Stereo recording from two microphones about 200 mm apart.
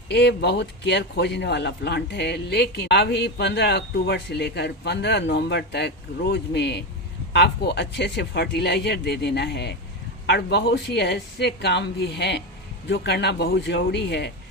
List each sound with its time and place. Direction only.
0.1 s a man's voice: 55° left (ahead or behind)